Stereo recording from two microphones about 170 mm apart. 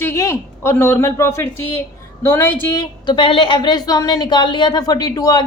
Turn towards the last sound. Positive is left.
turn(degrees=25)  # may be behind; listen again after turning